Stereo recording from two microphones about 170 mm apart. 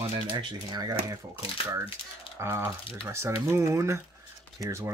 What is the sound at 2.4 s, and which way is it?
Speech, 15° right (ahead or behind).